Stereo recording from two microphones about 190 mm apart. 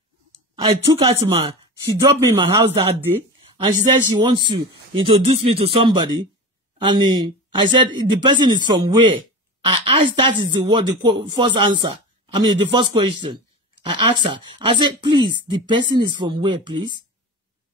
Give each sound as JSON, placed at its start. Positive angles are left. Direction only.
{"t": 0.6, "sound": "speech", "side_deg": -25}
{"t": 4.2, "sound": "speech", "side_deg": -25}